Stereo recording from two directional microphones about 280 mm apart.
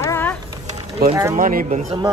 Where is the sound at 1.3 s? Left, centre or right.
Right.